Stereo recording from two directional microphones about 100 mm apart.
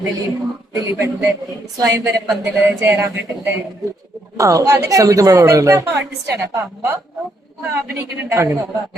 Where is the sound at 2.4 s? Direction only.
25° right (ahead or behind).